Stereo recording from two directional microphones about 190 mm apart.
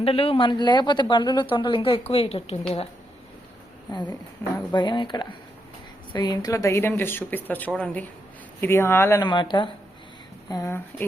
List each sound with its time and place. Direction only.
0.0 s speech: 30° left (ahead or behind)
4.5 s a woman's voice: 25° left (ahead or behind)